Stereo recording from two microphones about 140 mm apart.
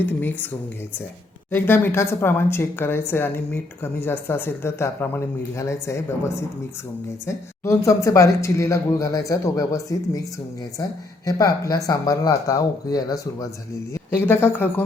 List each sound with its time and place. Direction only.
0.0 s speech: 15° left (ahead or behind)
11.3 s speech: 25° left (ahead or behind)